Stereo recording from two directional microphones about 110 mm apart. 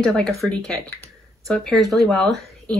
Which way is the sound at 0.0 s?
5° left (ahead or behind).